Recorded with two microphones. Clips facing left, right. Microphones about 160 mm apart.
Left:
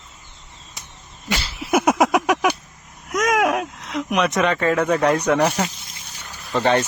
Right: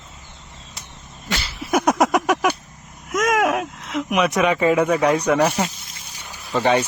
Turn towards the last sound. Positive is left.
turn(degrees=-10)  # may be behind; listen again after turning